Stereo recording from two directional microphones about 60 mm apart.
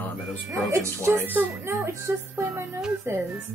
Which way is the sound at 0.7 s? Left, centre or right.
Right.